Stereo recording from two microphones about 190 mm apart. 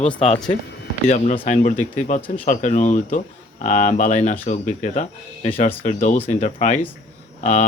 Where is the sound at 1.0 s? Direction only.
40° left (ahead or behind).